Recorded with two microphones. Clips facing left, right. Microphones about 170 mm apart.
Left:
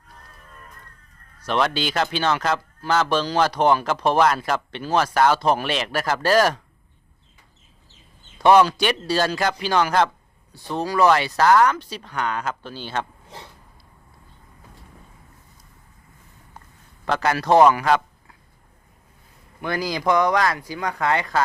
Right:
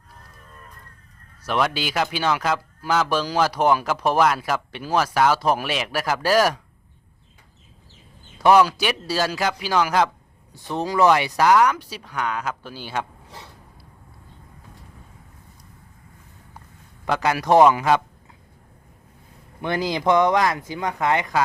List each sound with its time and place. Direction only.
1.5 s speech: 5° right (ahead or behind)
8.4 s speech: 5° right (ahead or behind)
10.5 s speech: 20° right (ahead or behind)
17.1 s a man's voice: 15° right (ahead or behind)
19.6 s speech: 25° right (ahead or behind)